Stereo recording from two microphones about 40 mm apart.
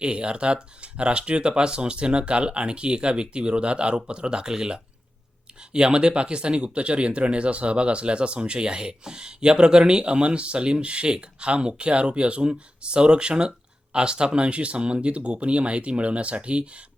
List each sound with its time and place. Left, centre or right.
0.0 s speech: right